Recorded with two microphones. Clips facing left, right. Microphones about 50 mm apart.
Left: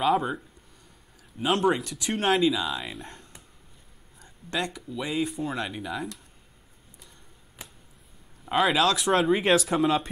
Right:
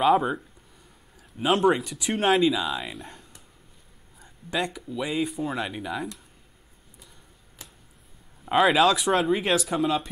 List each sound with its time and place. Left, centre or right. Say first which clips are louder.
0.0 s speech: right 3 dB; centre
1.4 s speech: right 2 dB; centre
7.6 s a sound: left 2 dB; centre
8.5 s speech: right 3 dB; centre